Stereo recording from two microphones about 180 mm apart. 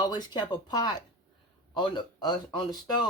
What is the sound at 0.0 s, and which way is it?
Speech, 25° left (ahead or behind).